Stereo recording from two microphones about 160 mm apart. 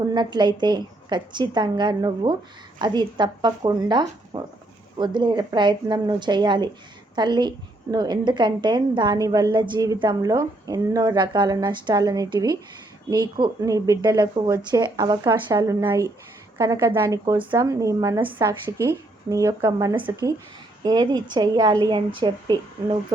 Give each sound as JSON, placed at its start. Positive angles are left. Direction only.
{"t": 0.0, "sound": "a woman's voice", "side_deg": -25}